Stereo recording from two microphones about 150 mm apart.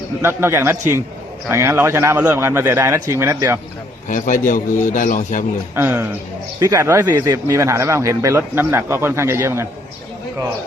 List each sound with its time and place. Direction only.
0.2 s a man's voice: 15° right (ahead or behind)
4.1 s a man's voice: 60° left (ahead or behind)
5.7 s a man's voice: 10° right (ahead or behind)